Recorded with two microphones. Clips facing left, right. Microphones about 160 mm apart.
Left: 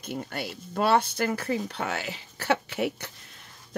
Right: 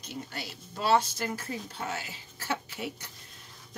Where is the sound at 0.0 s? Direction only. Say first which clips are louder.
Left 6 dB; 55° left (ahead or behind).